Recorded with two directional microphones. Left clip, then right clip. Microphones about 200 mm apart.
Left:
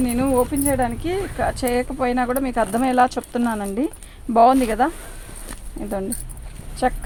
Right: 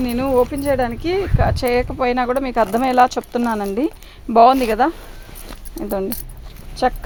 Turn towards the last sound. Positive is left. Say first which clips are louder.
# right 3 dB
turn(degrees=-45)  # may be behind; listen again after turning